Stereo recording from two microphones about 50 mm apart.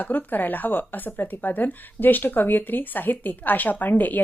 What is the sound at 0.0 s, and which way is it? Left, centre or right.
A woman's voice, left.